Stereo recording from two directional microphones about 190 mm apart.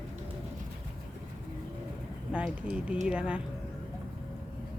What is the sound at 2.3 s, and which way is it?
Speech, 5° right (ahead or behind).